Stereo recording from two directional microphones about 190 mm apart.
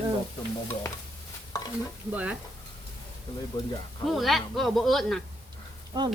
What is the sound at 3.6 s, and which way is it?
Speech, 20° left (ahead or behind).